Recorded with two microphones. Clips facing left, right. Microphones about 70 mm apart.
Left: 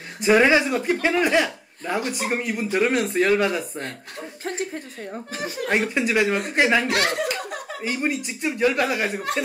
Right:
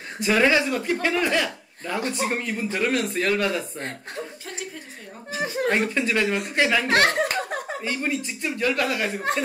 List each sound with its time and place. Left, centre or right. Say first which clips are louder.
0.2 s a man's voice: left 3 dB; centre
5.7 s a man's voice: left 2 dB; centre
6.9 s speech: right 3 dB; right
7.8 s a man's voice: left 5 dB; centre